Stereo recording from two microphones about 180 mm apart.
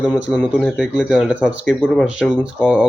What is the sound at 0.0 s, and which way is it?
Speech, 5° right (ahead or behind).